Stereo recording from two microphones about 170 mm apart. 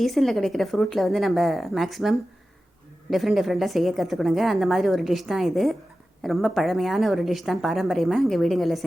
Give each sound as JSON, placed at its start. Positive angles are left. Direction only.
{"t": 0.0, "sound": "a woman's voice", "side_deg": 0}